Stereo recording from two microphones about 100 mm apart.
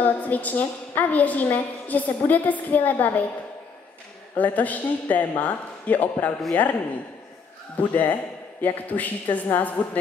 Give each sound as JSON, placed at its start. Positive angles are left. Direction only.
{"t": 0.0, "sound": "a woman's voice", "side_deg": 15}
{"t": 4.4, "sound": "a woman's voice", "side_deg": 15}
{"t": 7.7, "sound": "a woman's voice", "side_deg": 15}